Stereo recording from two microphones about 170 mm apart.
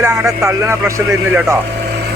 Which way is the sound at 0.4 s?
20° right (ahead or behind).